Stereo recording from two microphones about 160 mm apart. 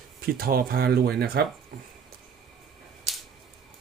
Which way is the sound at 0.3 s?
70° right (ahead or behind).